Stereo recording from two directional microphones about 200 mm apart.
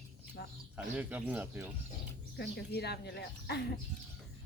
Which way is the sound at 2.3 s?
55° left (ahead or behind).